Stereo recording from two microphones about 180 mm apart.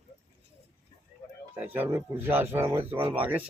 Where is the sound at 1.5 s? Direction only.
10° right (ahead or behind).